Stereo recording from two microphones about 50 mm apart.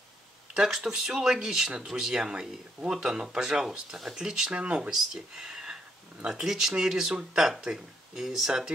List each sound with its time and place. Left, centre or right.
0.6 s speech: centre
4.5 s speech: right
5.3 s a sound: centre
6.2 s speech: centre